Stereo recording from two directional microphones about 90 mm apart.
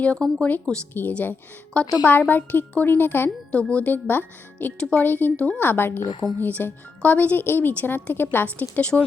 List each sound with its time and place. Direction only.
0.0 s a woman's voice: 15° left (ahead or behind)